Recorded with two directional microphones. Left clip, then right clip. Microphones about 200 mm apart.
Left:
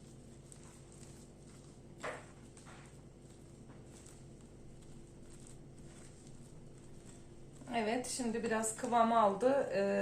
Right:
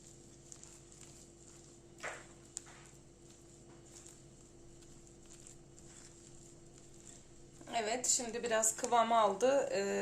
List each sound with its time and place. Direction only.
7.7 s a woman's voice: 55° right (ahead or behind)